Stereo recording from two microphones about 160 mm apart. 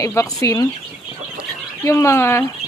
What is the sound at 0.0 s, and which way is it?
Speech, 20° left (ahead or behind).